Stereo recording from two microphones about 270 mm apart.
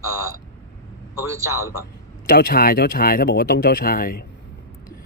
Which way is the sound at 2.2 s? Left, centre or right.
Left.